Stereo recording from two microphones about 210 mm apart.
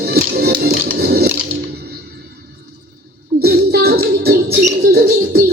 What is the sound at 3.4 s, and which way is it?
Music, 50° right (ahead or behind).